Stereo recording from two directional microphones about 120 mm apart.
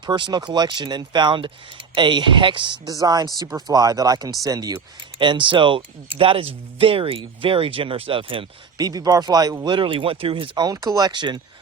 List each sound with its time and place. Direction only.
0.0 s speech: 40° right (ahead or behind)
5.1 s speech: 40° right (ahead or behind)
8.8 s speech: 30° right (ahead or behind)
10.7 s speech: 30° right (ahead or behind)